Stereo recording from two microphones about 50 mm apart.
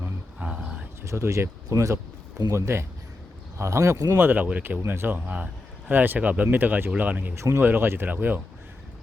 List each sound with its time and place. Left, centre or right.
0.3 s a sound: centre
1.0 s speech: right
2.5 s speech: right
4.2 s speech: right
7.3 s speech: right
7.6 s speech: right